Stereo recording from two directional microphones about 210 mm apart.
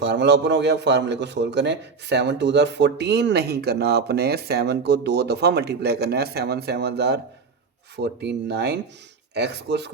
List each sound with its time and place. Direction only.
0.0 s a man's voice: 55° right (ahead or behind)